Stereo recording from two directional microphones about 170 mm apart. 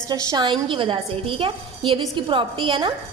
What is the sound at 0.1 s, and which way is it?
A woman's voice, 25° right (ahead or behind).